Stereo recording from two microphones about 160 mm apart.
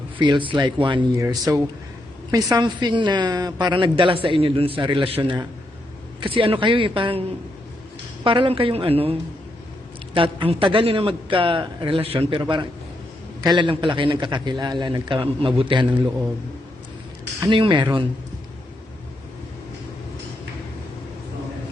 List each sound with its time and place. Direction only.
0.2 s a man's voice: 30° right (ahead or behind)
10.2 s a man's voice: 35° right (ahead or behind)
17.4 s a man's voice: 30° right (ahead or behind)